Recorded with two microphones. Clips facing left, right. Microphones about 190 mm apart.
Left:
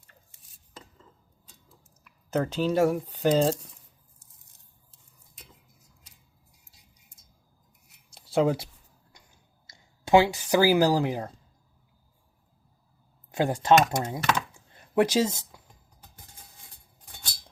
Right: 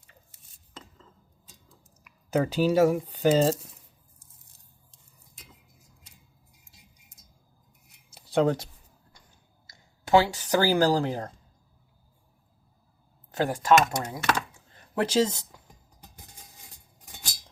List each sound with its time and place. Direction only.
2.0 s speech: 5° right (ahead or behind)
8.1 s a sound: 5° left (ahead or behind)
10.1 s speech: 15° left (ahead or behind)
13.3 s speech: 20° left (ahead or behind)